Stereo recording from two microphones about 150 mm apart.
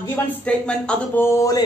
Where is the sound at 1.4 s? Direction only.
25° left (ahead or behind).